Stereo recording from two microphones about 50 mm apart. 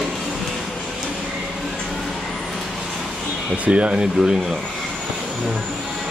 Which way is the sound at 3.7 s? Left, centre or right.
Right.